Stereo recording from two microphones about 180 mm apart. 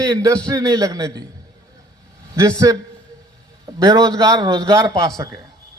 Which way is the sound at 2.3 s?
15° right (ahead or behind).